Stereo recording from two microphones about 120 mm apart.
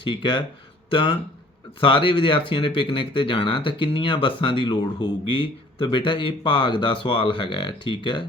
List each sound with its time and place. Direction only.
0.0 s speech: 40° left (ahead or behind)